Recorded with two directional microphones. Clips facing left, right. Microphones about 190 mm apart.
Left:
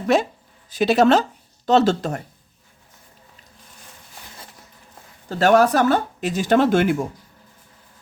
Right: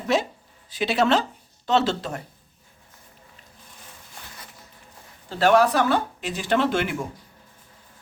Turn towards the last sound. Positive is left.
turn(degrees=45)  # may be behind; listen again after turning